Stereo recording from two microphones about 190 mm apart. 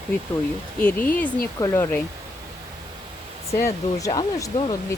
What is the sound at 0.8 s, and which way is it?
Speech, 10° left (ahead or behind).